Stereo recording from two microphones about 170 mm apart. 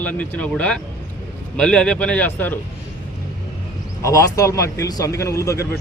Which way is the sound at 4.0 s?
20° left (ahead or behind).